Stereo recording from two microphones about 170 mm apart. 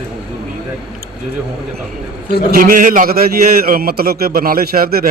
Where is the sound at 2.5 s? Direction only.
55° right (ahead or behind).